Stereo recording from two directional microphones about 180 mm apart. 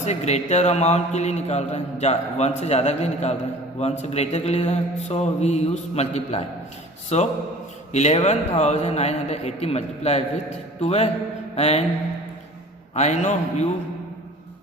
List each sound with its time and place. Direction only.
0.0 s a man's voice: 40° left (ahead or behind)
12.9 s a man's voice: 40° left (ahead or behind)